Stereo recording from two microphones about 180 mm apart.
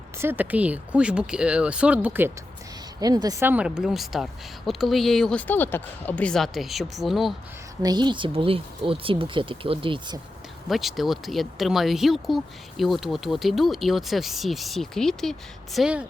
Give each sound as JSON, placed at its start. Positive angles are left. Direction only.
{"t": 0.2, "sound": "speech", "side_deg": -10}
{"t": 3.0, "sound": "speech", "side_deg": -20}
{"t": 7.8, "sound": "speech", "side_deg": -25}
{"t": 10.7, "sound": "speech", "side_deg": 0}